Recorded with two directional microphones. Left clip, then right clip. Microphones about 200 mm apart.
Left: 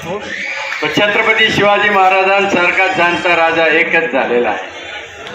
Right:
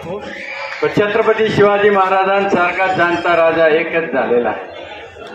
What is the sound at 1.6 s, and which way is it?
A man's voice, 55° right (ahead or behind).